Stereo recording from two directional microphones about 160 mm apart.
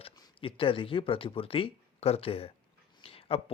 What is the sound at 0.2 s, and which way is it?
Speech, 35° left (ahead or behind).